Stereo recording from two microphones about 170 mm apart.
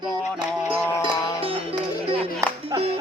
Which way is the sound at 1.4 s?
30° right (ahead or behind).